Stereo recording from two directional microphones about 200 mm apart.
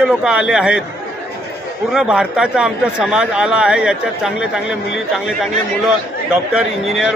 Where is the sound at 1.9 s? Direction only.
5° right (ahead or behind).